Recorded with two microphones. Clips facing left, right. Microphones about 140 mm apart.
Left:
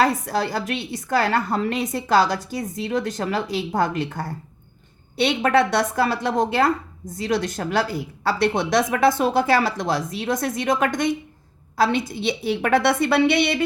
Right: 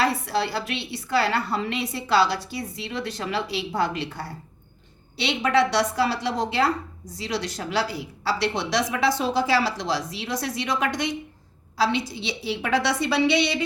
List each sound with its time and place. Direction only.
0.0 s a woman's voice: 45° left (ahead or behind)